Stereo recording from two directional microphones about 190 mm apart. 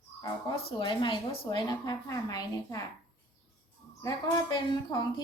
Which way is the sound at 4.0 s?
20° left (ahead or behind).